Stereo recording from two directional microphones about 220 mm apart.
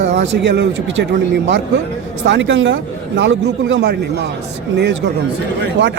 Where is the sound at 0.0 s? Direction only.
55° right (ahead or behind).